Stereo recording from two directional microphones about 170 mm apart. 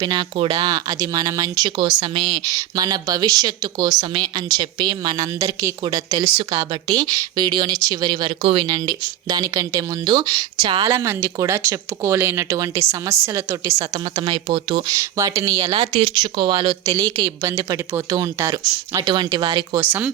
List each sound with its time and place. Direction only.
0.0 s speech: 25° right (ahead or behind)
19.8 s speech: 10° right (ahead or behind)